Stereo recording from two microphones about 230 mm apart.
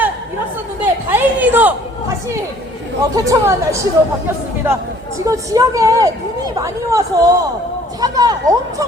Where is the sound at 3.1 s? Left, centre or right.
Centre.